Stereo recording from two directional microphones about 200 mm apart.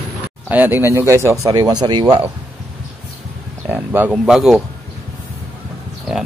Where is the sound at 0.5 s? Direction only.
10° right (ahead or behind).